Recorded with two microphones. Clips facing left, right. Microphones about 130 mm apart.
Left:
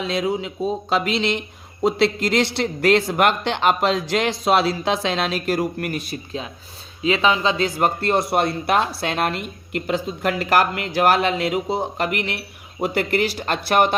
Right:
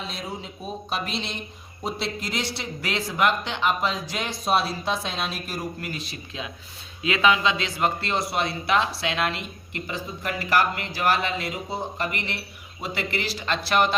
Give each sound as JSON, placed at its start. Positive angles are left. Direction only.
{"t": 0.0, "sound": "speech", "side_deg": 90}
{"t": 7.0, "sound": "speech", "side_deg": 30}